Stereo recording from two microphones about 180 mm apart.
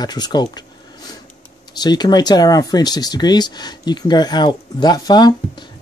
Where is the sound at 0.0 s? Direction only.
20° left (ahead or behind).